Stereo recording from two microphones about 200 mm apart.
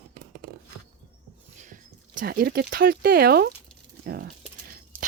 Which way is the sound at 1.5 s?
40° right (ahead or behind).